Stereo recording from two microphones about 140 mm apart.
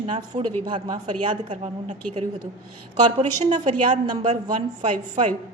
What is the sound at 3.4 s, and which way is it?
Speech, 55° right (ahead or behind).